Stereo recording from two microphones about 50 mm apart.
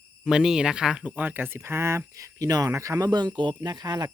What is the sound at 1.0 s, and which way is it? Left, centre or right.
Speech, right.